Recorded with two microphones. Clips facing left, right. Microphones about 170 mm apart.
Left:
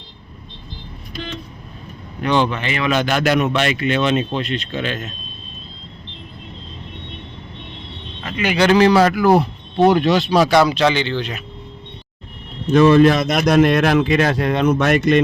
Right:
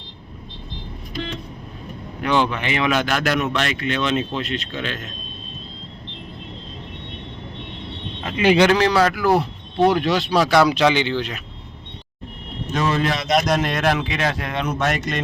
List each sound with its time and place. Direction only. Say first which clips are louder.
2.2 s speech: left 2 dB; 10° right (ahead or behind)
2.9 s speech: left 7 dB; centre (ahead or behind)
8.4 s speech: right 4 dB; 30° right (ahead or behind)
8.7 s speech: left 4 dB; 10° left (ahead or behind)
10.5 s speech: left 1 dB; 10° right (ahead or behind)
12.7 s a man's voice: left 11 dB; 60° left (ahead or behind); by 14.7 s 35° left (ahead or behind)
14.7 s speech: left 8 dB; 60° left (ahead or behind)